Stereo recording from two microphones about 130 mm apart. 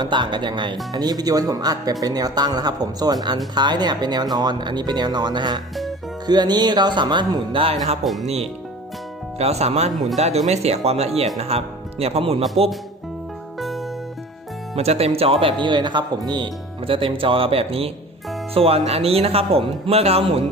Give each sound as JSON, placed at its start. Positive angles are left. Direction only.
{"t": 0.0, "sound": "speech", "side_deg": -35}
{"t": 8.0, "sound": "speech", "side_deg": 0}
{"t": 9.4, "sound": "speech", "side_deg": -55}
{"t": 13.6, "sound": "music", "side_deg": 0}
{"t": 14.8, "sound": "speech", "side_deg": -50}